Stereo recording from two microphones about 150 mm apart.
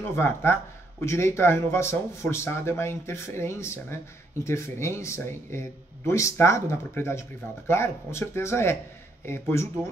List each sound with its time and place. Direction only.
0.1 s speech: 15° left (ahead or behind)